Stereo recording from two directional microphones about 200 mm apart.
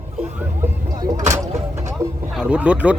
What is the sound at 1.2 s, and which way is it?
Vehicle, 35° right (ahead or behind).